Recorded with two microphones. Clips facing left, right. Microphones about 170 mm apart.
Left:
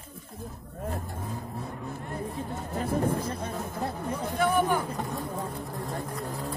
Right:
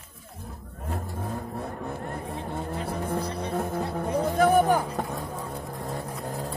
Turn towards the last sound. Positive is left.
turn(degrees=-50)  # may be behind; listen again after turning